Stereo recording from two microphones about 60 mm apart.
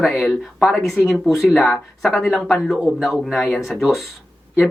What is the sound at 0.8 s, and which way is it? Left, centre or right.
Speech, left.